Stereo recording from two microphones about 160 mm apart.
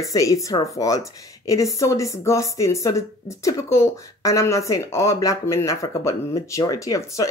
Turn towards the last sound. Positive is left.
turn(degrees=20)  # may be behind; listen again after turning